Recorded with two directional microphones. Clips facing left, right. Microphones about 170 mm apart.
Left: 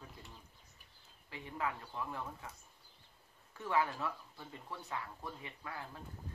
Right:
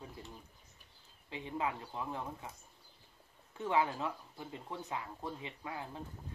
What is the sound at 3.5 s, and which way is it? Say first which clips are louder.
Speech: right 2 dB; 20° right (ahead or behind).